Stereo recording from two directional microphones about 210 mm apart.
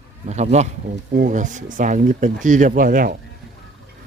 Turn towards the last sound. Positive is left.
turn(degrees=-45)  # may be behind; listen again after turning